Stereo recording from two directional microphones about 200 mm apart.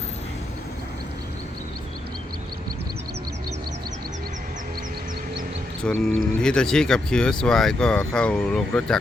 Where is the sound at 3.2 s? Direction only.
50° right (ahead or behind).